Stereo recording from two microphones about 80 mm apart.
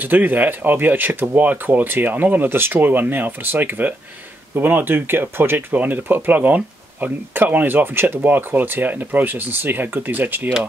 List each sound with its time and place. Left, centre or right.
0.0 s speech: right